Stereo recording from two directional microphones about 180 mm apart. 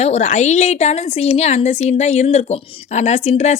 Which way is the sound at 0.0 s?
35° left (ahead or behind).